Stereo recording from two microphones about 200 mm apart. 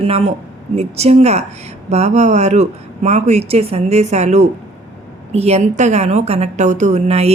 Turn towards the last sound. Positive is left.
turn(degrees=-30)  # may be behind; listen again after turning